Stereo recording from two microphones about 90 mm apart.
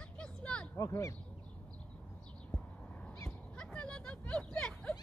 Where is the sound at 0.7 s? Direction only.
35° left (ahead or behind).